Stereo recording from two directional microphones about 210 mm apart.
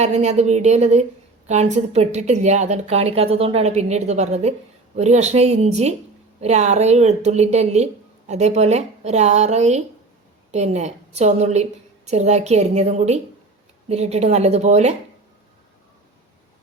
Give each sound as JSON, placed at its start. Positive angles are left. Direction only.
{"t": 0.0, "sound": "a woman's voice", "side_deg": -30}